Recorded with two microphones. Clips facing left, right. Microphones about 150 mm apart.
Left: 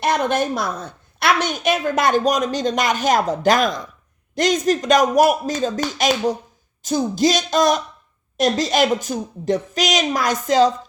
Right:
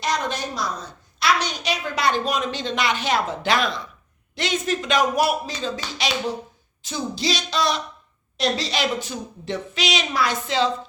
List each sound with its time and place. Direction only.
0.0 s a woman's voice: 55° left (ahead or behind)